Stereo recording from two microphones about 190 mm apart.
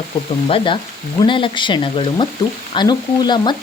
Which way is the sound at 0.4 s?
30° left (ahead or behind).